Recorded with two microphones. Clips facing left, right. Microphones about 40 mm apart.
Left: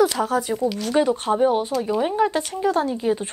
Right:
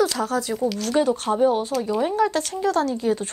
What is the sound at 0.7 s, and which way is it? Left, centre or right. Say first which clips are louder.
Speech: even; centre.